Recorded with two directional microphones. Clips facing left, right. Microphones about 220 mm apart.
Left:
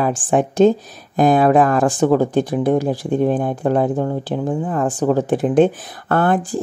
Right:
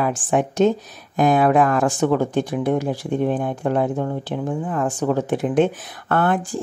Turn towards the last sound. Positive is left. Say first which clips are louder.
# left 3 dB
turn(degrees=40)  # may be behind; listen again after turning